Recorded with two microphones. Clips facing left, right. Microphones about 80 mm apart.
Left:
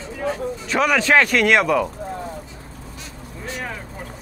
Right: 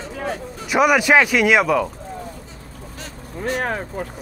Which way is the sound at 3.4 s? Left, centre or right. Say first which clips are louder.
Right 8 dB; right.